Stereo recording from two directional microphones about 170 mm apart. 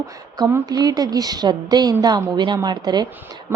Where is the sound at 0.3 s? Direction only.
20° right (ahead or behind).